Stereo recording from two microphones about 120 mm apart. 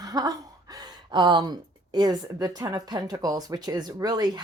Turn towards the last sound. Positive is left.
turn(degrees=-35)  # may be behind; listen again after turning